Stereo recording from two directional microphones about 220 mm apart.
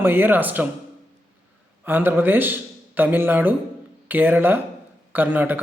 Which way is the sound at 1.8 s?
10° right (ahead or behind).